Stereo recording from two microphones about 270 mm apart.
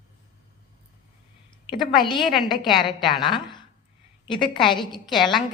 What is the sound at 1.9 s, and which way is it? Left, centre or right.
Speech, centre.